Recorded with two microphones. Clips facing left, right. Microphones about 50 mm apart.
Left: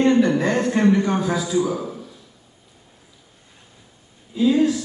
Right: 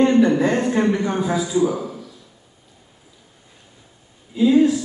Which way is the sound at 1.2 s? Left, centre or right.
Right.